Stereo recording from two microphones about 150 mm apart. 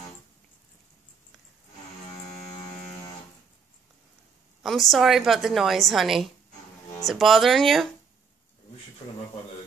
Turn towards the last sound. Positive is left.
turn(degrees=0)  # may be behind; listen again after turning